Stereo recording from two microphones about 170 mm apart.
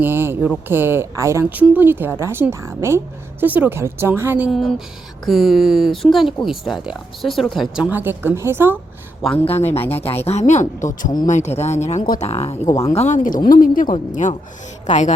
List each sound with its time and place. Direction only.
0.0 s speech: 15° right (ahead or behind)
9.4 s speech: 35° left (ahead or behind)
12.6 s speech: 20° left (ahead or behind)
12.9 s speech: 40° left (ahead or behind)